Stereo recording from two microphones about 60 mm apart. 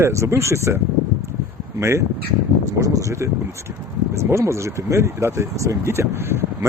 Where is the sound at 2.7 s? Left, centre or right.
Right.